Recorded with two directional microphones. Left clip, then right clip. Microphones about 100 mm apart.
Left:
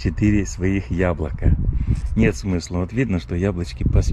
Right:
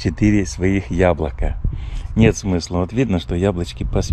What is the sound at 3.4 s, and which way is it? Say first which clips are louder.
Speech: right 4 dB; 80° right.